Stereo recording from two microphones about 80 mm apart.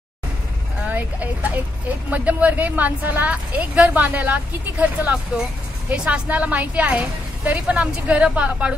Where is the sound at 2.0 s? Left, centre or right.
Centre.